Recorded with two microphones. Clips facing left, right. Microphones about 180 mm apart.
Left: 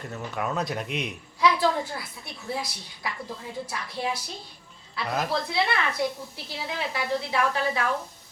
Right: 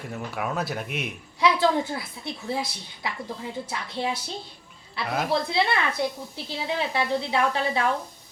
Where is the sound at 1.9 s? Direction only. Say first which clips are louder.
Right 5 dB; 25° right (ahead or behind).